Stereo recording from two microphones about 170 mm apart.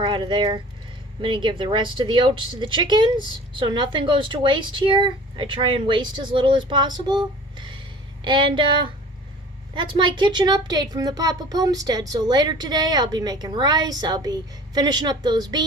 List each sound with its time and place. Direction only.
0.0 s speech: 30° right (ahead or behind)